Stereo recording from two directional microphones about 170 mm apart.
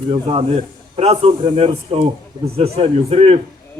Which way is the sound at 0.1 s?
35° right (ahead or behind).